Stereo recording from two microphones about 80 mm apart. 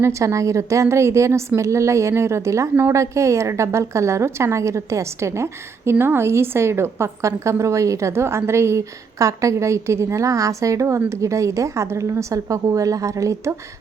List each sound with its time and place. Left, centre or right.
0.0 s a woman's voice: right